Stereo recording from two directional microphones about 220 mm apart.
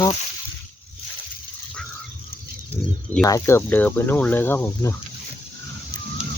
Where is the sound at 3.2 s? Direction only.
15° left (ahead or behind).